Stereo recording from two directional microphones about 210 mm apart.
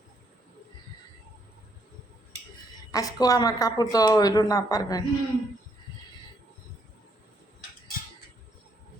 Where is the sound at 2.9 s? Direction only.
15° left (ahead or behind).